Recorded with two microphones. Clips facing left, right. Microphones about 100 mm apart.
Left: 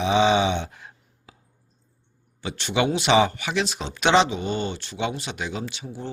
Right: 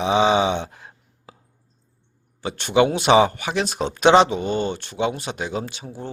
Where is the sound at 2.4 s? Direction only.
40° right (ahead or behind).